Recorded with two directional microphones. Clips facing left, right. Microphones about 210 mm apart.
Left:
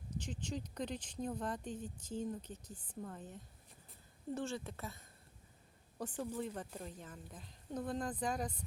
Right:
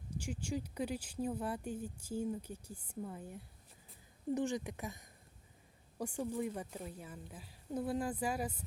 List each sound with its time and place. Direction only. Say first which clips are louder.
0.1 s speech: right 3 dB; 10° right (ahead or behind)